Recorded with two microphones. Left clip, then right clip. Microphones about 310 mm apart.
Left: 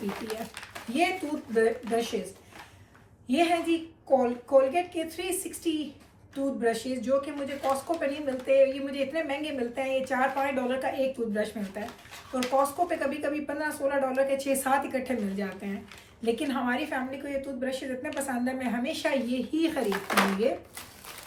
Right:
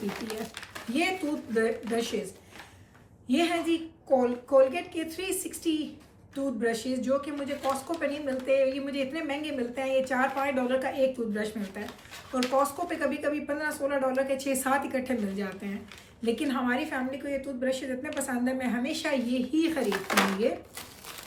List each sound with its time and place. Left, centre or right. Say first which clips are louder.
0.0 s speech: even; centre
3.2 s a woman's voice: left 2 dB; centre